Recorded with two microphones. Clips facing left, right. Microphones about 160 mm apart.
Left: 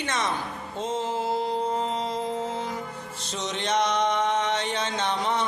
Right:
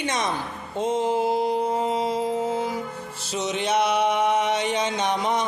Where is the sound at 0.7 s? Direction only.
15° right (ahead or behind).